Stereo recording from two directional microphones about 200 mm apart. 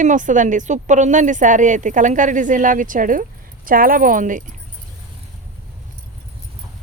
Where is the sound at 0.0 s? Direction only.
40° right (ahead or behind).